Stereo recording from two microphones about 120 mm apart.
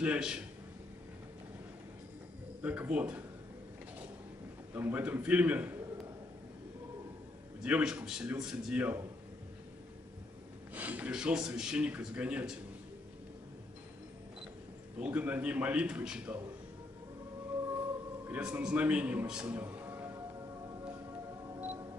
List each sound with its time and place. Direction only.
0.0 s speech: 10° right (ahead or behind)
2.6 s speech: 15° right (ahead or behind)
4.7 s speech: 15° right (ahead or behind)
7.6 s speech: 10° right (ahead or behind)
10.7 s speech: 15° right (ahead or behind)
15.0 s speech: 10° right (ahead or behind)
18.3 s speech: 5° right (ahead or behind)
19.5 s music: 20° right (ahead or behind)